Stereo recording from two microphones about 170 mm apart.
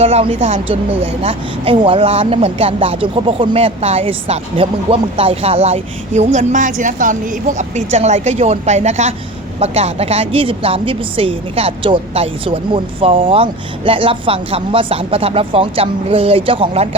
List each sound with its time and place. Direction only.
0.0 s speech: 35° right (ahead or behind)